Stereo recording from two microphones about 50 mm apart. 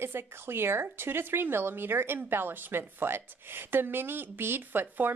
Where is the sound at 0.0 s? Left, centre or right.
Right.